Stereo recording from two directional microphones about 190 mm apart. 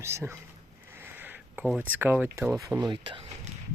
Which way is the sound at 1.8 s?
10° right (ahead or behind).